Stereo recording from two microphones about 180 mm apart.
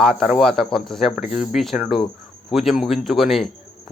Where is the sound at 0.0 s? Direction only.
Centre (ahead or behind).